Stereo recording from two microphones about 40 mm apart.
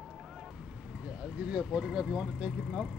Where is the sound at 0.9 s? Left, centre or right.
Right.